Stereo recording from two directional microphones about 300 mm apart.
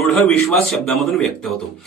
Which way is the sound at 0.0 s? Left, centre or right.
Centre.